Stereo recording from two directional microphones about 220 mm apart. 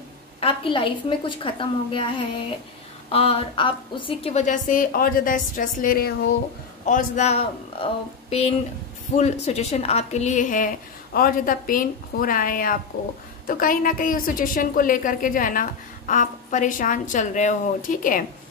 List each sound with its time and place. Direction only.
0.4 s a woman's voice: 25° left (ahead or behind); by 6.3 s 45° left (ahead or behind)
6.9 s a woman's voice: 30° left (ahead or behind)